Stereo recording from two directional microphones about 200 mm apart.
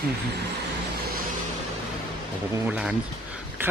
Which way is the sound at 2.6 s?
5° right (ahead or behind).